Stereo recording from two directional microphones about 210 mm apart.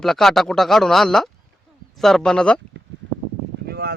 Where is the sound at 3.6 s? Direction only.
50° right (ahead or behind).